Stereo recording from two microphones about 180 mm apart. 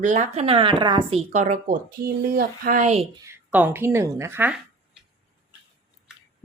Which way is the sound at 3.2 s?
10° right (ahead or behind).